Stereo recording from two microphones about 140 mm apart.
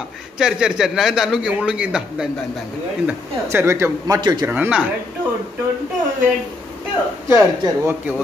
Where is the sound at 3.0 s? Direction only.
15° right (ahead or behind).